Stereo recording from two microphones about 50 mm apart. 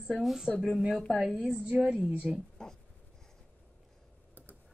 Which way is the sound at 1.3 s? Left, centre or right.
Right.